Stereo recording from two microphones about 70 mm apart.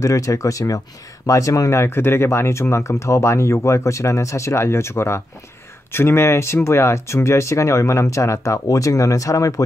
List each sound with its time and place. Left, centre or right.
0.0 s speech: left